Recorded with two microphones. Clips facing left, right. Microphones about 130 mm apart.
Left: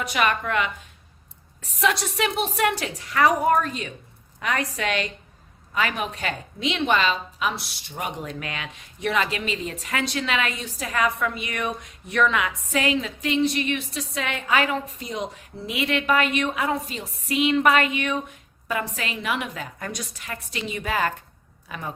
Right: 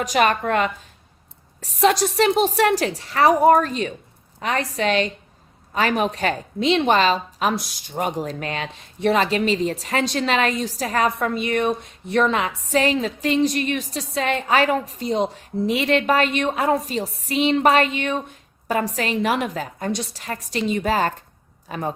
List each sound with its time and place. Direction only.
0.0 s a woman's voice: 35° right (ahead or behind)